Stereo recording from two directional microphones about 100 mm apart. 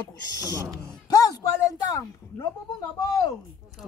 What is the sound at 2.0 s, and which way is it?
Speech, 30° left (ahead or behind).